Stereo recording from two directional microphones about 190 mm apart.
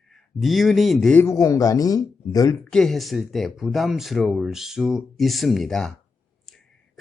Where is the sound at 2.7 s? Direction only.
Centre (ahead or behind).